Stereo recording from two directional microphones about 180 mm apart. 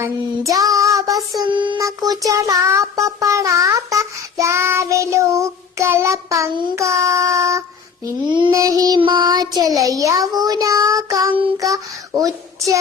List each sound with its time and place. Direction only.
0.0 s child singing: 20° right (ahead or behind)